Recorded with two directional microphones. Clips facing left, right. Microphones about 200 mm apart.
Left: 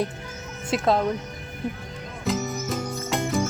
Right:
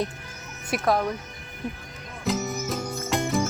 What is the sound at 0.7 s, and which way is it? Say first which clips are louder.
Speech: left 2 dB; 25° left (ahead or behind).